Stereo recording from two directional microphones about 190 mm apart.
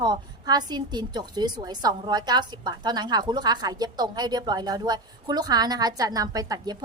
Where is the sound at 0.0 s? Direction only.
20° right (ahead or behind).